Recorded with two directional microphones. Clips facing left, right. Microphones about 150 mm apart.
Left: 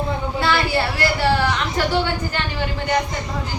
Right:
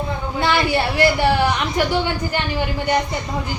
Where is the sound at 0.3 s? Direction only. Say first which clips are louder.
Right 2 dB; 20° right (ahead or behind).